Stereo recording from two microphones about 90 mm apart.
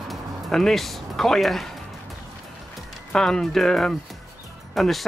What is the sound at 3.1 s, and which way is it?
Speech, 5° left (ahead or behind).